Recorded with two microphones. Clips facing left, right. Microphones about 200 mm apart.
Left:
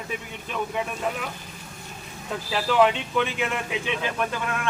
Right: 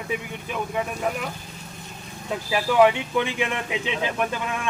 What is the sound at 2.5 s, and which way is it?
Speech, 10° right (ahead or behind).